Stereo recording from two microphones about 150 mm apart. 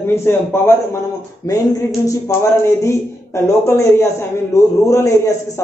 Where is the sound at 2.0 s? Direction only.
20° left (ahead or behind).